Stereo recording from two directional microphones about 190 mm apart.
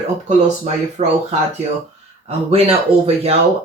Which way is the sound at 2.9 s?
30° right (ahead or behind).